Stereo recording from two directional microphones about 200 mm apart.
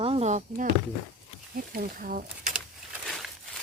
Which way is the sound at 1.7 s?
45° right (ahead or behind).